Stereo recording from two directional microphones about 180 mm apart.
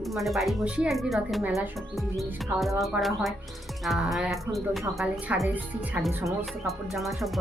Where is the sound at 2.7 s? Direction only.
Centre (ahead or behind).